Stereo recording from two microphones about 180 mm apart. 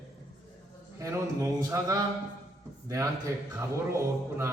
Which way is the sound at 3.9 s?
15° right (ahead or behind).